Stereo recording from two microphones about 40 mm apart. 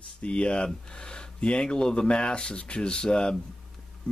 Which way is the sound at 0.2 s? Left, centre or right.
Left.